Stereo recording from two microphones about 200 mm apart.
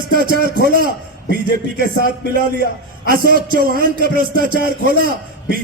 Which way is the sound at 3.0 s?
45° right (ahead or behind).